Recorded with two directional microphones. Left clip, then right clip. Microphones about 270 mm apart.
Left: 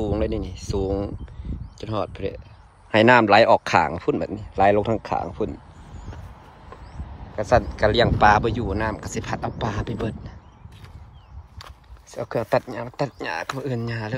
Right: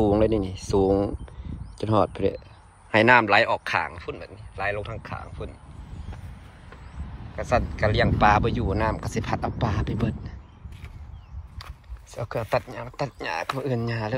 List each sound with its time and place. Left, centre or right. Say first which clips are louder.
0.0 s a man's voice: right 4 dB; centre; by 5.6 s left
7.3 s speech: left 5 dB; centre
11.5 s a sound: left 1 dB; centre
12.7 s speech: left 4 dB; centre